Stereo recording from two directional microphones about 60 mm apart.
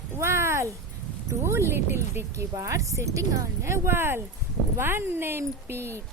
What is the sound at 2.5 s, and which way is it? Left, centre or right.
Speech, right.